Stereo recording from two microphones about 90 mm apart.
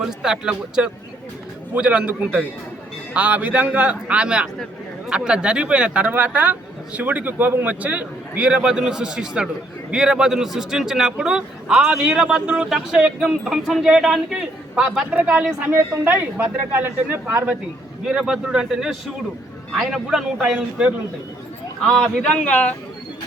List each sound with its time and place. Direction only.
0.0 s speech: 5° right (ahead or behind)
18.0 s speech: 5° right (ahead or behind)
21.8 s speech: 5° left (ahead or behind)